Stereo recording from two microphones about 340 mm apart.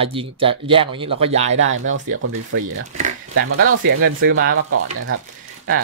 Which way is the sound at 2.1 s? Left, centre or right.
Right.